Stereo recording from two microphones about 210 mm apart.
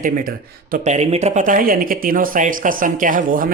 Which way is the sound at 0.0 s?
40° right (ahead or behind).